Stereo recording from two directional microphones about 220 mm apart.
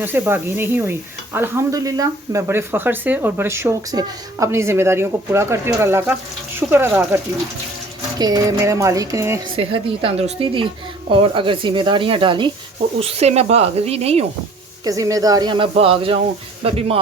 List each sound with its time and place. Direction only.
0.0 s stir: 10° right (ahead or behind)
8.2 s stir: 15° right (ahead or behind)
9.6 s speech: 25° right (ahead or behind)
14.8 s speech: 15° right (ahead or behind)